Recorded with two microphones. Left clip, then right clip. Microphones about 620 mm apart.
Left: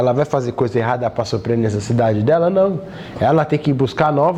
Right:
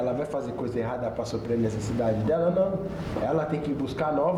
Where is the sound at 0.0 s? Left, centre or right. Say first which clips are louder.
Left 12 dB; left.